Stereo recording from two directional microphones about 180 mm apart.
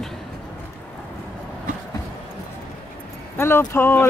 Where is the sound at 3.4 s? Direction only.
15° left (ahead or behind).